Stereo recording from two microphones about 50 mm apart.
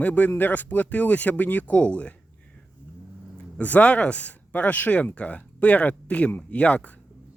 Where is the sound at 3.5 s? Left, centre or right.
Left.